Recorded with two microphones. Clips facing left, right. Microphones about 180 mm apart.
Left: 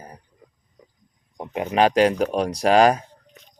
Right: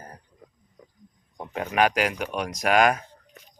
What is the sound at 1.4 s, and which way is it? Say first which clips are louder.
Speech: left 4 dB; 20° left (ahead or behind).